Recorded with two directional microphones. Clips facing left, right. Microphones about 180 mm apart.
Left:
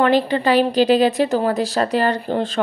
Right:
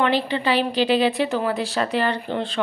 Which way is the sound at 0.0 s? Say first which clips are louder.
Left 5 dB; 45° left (ahead or behind).